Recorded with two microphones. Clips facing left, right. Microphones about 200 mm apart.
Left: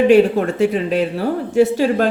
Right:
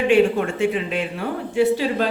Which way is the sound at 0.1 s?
40° left (ahead or behind).